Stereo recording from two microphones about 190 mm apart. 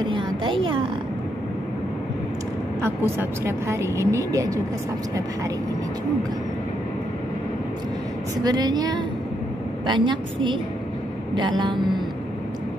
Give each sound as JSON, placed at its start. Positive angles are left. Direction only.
{"t": 0.0, "sound": "a sound", "side_deg": -25}
{"t": 2.8, "sound": "speech", "side_deg": -15}
{"t": 8.4, "sound": "a woman's voice", "side_deg": -20}